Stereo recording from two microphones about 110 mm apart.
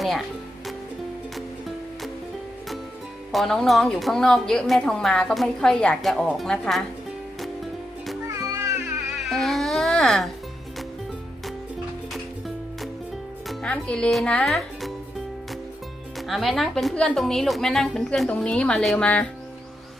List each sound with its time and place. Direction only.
3.3 s a woman's voice: 5° left (ahead or behind)
7.3 s music: centre (ahead or behind)
8.3 s music: 30° right (ahead or behind)
9.1 s music: centre (ahead or behind)
12.1 s music: centre (ahead or behind)
13.5 s speech: 10° left (ahead or behind)
16.1 s a woman's voice: centre (ahead or behind)